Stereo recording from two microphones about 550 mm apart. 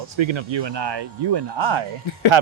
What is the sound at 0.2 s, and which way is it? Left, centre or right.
Speech, right.